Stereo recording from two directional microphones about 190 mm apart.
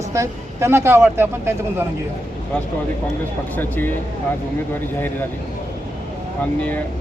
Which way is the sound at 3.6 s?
10° left (ahead or behind).